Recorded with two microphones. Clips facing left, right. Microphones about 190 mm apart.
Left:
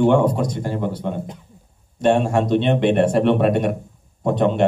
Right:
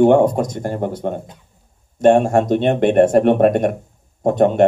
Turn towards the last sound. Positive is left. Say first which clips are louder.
# right 4 dB
turn(degrees=-45)  # may be behind; listen again after turning